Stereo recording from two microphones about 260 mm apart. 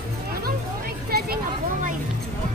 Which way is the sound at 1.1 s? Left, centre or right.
Right.